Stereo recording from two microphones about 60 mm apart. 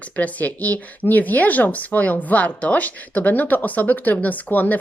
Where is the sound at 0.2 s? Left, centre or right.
Left.